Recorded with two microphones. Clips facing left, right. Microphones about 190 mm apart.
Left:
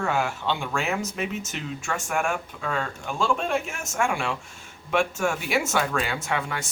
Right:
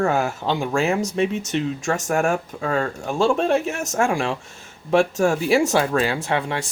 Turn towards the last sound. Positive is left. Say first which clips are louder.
# right 5 dB
turn(degrees=-30)  # may be behind; listen again after turning